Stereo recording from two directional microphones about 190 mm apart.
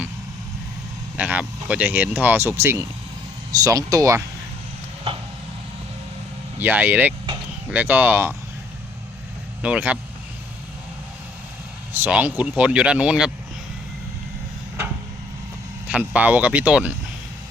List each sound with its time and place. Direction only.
1.1 s speech: 10° right (ahead or behind)
6.6 s speech: 10° right (ahead or behind)
9.6 s speech: 5° right (ahead or behind)
11.9 s speech: 10° right (ahead or behind)
15.9 s speech: 5° right (ahead or behind)